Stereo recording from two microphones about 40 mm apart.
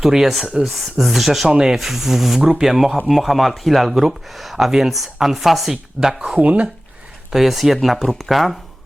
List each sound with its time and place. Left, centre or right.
0.0 s speech: centre
1.5 s speech: centre
1.7 s speech: centre
5.7 s speech: centre
6.4 s speech: right
7.3 s speech: centre